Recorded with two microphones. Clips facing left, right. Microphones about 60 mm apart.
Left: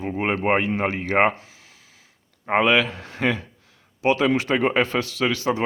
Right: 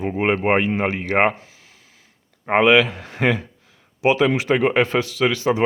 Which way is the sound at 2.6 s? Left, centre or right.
Centre.